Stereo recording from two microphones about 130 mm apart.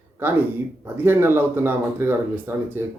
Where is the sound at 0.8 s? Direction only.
15° right (ahead or behind).